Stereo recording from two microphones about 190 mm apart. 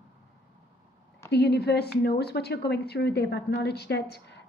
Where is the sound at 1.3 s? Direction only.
60° left (ahead or behind).